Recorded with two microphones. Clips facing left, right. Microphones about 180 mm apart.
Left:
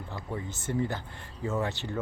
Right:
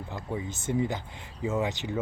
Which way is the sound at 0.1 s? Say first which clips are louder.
Right 3 dB; 15° right (ahead or behind).